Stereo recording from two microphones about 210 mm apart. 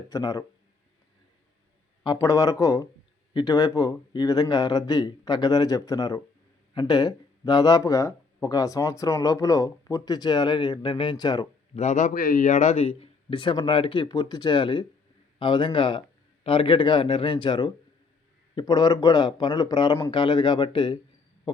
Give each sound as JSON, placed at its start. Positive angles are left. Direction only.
{"t": 0.1, "sound": "speech", "side_deg": 15}
{"t": 2.2, "sound": "speech", "side_deg": 15}